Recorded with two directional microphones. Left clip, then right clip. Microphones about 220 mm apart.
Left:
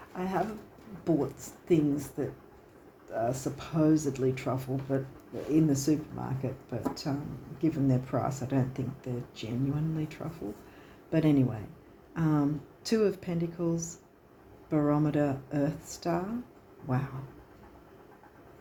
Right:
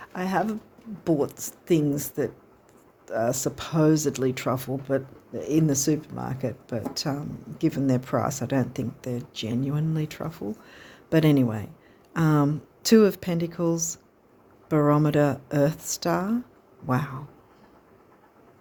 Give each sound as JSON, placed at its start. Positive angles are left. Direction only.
{"t": 0.1, "sound": "speech", "side_deg": -50}